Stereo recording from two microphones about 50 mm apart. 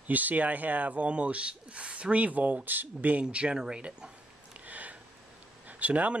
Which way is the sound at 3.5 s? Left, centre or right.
Centre.